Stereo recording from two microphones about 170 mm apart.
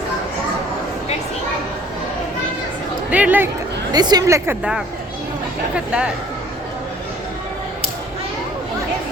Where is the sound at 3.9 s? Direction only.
25° right (ahead or behind).